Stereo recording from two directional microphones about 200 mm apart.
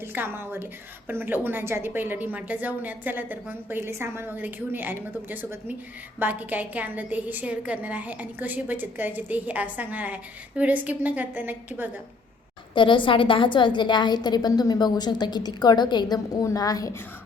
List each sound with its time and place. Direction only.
0.0 s a woman's voice: 10° right (ahead or behind)
12.7 s a woman's voice: 25° left (ahead or behind)